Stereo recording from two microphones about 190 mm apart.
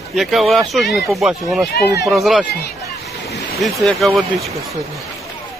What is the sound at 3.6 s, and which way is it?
Speech, centre (ahead or behind).